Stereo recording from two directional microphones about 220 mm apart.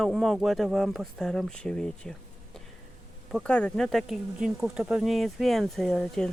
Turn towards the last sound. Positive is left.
turn(degrees=0)  # may be behind; listen again after turning